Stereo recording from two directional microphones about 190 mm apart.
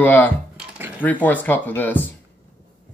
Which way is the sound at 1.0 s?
10° left (ahead or behind).